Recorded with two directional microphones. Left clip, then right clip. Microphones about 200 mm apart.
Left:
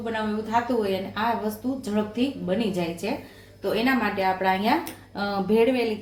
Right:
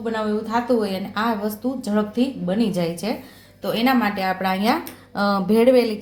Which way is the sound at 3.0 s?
45° right (ahead or behind).